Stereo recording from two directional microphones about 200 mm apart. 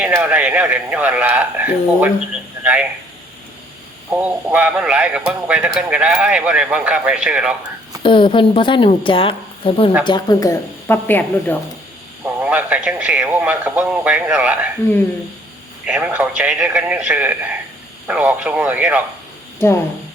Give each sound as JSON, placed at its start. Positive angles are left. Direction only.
{"t": 0.0, "sound": "speech", "side_deg": -5}
{"t": 4.1, "sound": "speech", "side_deg": -10}
{"t": 8.0, "sound": "a woman's voice", "side_deg": 25}
{"t": 12.2, "sound": "speech", "side_deg": -5}
{"t": 15.9, "sound": "speech", "side_deg": -5}
{"t": 19.6, "sound": "a woman's voice", "side_deg": 10}